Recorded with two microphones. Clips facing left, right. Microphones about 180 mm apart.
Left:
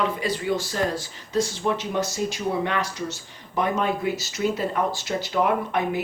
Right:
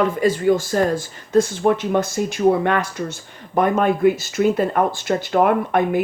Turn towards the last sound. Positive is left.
turn(degrees=-55)  # may be behind; listen again after turning